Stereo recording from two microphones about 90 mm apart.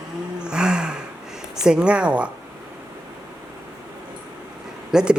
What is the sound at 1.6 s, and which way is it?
Speech, 10° right (ahead or behind).